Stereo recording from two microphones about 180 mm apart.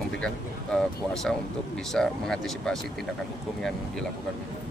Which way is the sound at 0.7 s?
5° left (ahead or behind).